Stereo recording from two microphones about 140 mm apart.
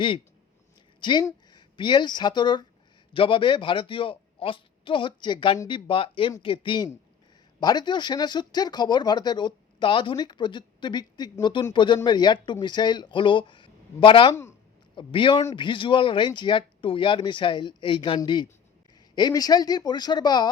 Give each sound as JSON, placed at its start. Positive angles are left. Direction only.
{"t": 1.0, "sound": "speech", "side_deg": 35}